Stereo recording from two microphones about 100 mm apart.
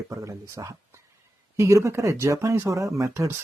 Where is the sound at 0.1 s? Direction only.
30° right (ahead or behind).